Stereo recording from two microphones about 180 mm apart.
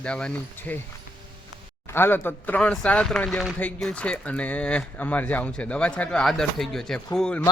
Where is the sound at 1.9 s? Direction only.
10° left (ahead or behind).